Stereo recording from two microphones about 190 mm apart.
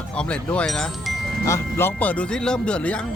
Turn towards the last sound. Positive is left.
turn(degrees=5)  # may be behind; listen again after turning